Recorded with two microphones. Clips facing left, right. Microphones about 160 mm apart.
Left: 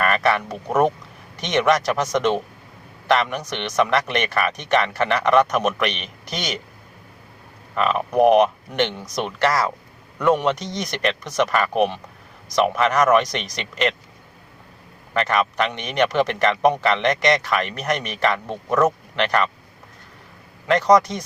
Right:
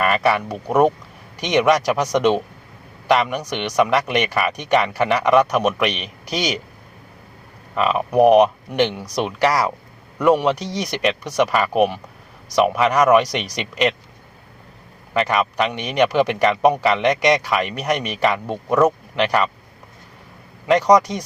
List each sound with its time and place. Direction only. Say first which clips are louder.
0.0 s a man's voice: right 2 dB; 10° right (ahead or behind)
7.8 s a man's voice: right 2 dB; 5° right (ahead or behind)
15.1 s a man's voice: right 2 dB; 10° right (ahead or behind)
20.7 s a man's voice: right 2 dB; 15° right (ahead or behind)